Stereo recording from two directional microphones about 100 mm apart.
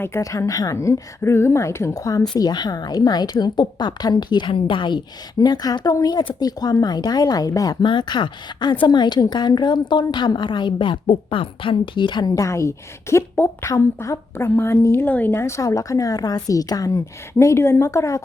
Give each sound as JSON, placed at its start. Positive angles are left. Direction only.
{"t": 0.0, "sound": "a woman's voice", "side_deg": 30}
{"t": 2.3, "sound": "a woman's voice", "side_deg": 45}
{"t": 3.3, "sound": "a woman's voice", "side_deg": 55}
{"t": 7.9, "sound": "a woman's voice", "side_deg": 50}
{"t": 12.2, "sound": "a woman's voice", "side_deg": 30}